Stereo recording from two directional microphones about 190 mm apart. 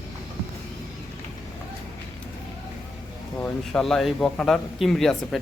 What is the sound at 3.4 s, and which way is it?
Speech, 5° left (ahead or behind).